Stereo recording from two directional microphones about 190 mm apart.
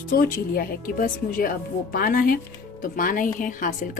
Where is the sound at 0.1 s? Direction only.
50° left (ahead or behind).